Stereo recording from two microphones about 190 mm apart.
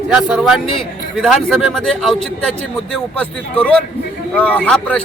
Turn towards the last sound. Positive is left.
turn(degrees=5)  # may be behind; listen again after turning